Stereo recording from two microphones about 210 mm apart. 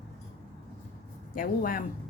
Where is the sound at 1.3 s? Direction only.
40° left (ahead or behind).